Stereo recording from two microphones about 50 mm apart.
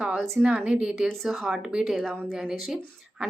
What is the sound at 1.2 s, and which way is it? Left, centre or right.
Speech, centre.